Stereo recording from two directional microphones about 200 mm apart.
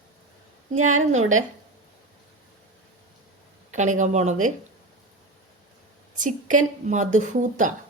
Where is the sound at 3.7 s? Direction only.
40° right (ahead or behind).